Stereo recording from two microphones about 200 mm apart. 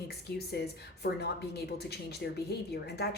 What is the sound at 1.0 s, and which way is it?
A woman's voice, 55° left (ahead or behind).